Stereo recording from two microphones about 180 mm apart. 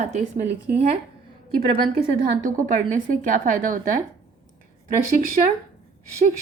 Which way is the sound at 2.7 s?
45° right (ahead or behind).